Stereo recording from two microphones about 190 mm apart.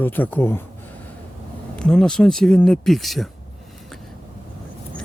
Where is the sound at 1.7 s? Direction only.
5° left (ahead or behind).